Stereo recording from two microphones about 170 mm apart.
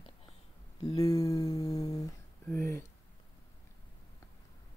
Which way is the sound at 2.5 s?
20° left (ahead or behind).